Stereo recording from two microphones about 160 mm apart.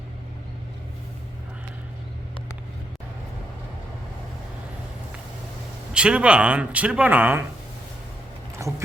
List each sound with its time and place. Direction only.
5.9 s speech: 5° right (ahead or behind)
8.6 s clip-clop: 20° right (ahead or behind)